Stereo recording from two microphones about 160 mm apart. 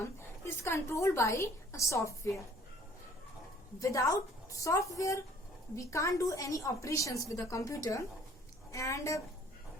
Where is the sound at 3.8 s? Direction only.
20° left (ahead or behind).